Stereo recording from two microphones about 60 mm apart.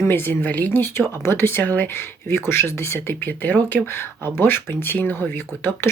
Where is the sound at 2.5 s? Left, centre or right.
Left.